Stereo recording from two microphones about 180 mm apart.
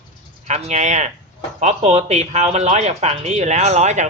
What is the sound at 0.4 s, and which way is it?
Speech, 40° right (ahead or behind).